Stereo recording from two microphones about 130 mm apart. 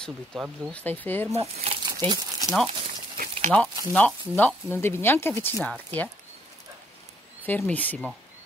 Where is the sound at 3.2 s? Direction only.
65° right (ahead or behind).